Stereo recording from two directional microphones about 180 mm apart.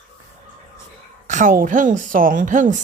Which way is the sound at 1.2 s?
45° right (ahead or behind).